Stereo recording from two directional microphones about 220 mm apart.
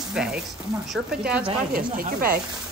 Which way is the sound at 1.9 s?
40° right (ahead or behind).